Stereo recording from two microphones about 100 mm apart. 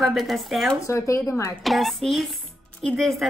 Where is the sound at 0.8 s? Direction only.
30° left (ahead or behind).